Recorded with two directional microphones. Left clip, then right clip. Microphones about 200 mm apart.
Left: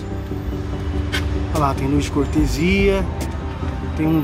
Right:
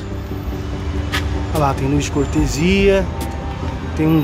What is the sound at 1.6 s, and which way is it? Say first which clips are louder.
Speech: right 2 dB; 10° right (ahead or behind).